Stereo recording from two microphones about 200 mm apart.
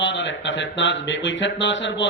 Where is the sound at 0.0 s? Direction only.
65° left (ahead or behind).